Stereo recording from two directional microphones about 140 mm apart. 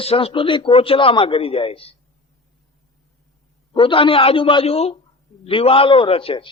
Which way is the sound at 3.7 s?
40° left (ahead or behind).